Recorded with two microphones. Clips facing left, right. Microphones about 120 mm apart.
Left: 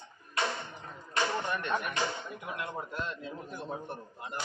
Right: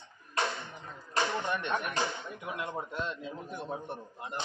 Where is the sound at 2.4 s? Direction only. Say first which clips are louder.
Right 2 dB; 20° right (ahead or behind).